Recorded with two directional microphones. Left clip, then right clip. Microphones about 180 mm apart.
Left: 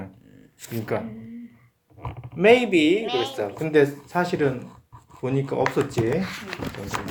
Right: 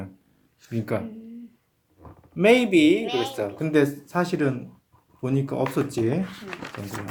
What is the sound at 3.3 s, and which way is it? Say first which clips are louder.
Speech: left 4 dB; 55° right (ahead or behind).